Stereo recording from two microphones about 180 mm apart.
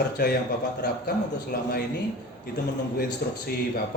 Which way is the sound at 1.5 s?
60° left (ahead or behind).